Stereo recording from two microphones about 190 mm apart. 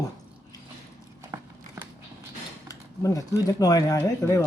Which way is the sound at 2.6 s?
15° left (ahead or behind).